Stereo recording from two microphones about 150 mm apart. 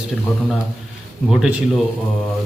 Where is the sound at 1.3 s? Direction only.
5° right (ahead or behind).